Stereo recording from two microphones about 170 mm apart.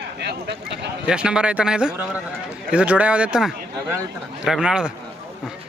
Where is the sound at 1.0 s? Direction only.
5° right (ahead or behind).